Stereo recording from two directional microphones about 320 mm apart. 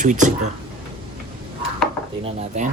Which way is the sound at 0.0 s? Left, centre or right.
Right.